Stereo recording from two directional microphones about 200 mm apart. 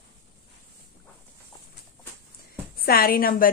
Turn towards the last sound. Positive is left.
turn(degrees=45)  # may be behind; listen again after turning